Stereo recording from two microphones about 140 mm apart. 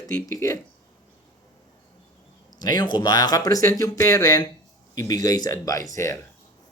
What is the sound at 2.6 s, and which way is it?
Speech, 30° left (ahead or behind).